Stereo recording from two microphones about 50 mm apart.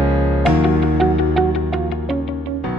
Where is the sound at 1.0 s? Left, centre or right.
Centre.